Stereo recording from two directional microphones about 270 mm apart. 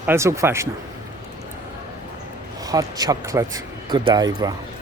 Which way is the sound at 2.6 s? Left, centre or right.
Centre.